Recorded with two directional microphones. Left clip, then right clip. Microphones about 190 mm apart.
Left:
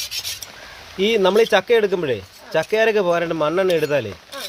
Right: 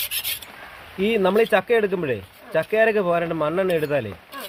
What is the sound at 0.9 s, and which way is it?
Speech, 35° left (ahead or behind).